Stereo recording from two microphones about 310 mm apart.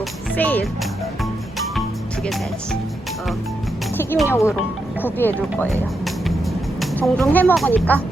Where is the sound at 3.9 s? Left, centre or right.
Centre.